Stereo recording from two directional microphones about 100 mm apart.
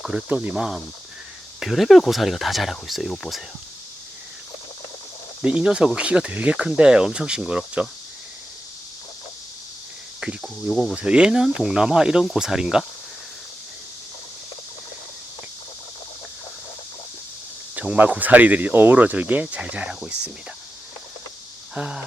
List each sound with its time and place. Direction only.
0.0 s speech: 5° right (ahead or behind)
5.4 s speech: 10° right (ahead or behind)
10.4 s speech: 5° left (ahead or behind)
10.9 s speech: 10° right (ahead or behind)
17.7 s speech: 15° right (ahead or behind)
21.8 s speech: 5° right (ahead or behind)